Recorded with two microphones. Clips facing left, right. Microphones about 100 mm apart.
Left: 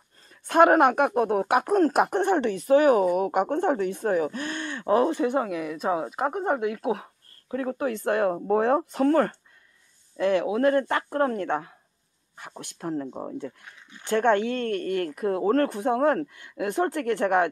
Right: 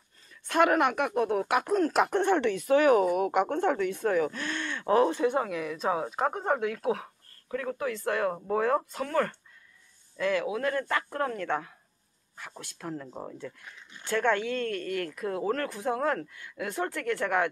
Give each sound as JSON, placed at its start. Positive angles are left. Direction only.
{"t": 0.3, "sound": "speech", "side_deg": 35}
{"t": 2.0, "sound": "speech", "side_deg": 15}
{"t": 2.7, "sound": "speech", "side_deg": 40}
{"t": 4.4, "sound": "speech", "side_deg": 20}
{"t": 7.7, "sound": "a woman's voice", "side_deg": 35}